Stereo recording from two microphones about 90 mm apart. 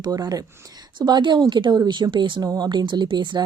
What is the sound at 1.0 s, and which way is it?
Speech, 55° right (ahead or behind).